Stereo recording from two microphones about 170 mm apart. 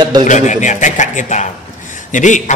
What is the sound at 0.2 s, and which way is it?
A man's voice, 45° left (ahead or behind).